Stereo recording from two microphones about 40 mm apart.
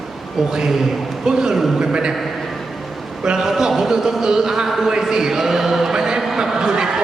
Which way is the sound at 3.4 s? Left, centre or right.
Centre.